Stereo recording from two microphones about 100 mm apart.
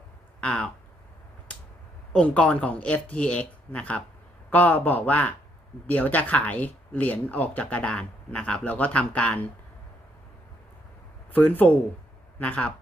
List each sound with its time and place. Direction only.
0.4 s speech: 10° left (ahead or behind)
2.1 s speech: 15° left (ahead or behind)
11.3 s speech: 20° left (ahead or behind)